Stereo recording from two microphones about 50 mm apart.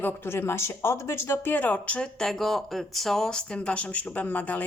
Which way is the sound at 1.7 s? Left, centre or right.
Left.